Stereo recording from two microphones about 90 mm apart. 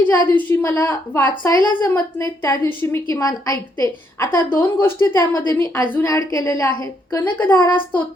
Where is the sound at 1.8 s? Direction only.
40° left (ahead or behind).